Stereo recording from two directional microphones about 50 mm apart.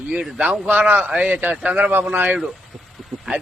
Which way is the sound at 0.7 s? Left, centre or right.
Right.